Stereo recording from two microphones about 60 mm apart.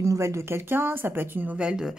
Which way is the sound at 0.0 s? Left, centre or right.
Right.